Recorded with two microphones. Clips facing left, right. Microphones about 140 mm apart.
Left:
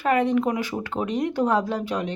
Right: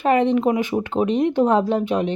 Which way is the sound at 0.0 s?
25° right (ahead or behind).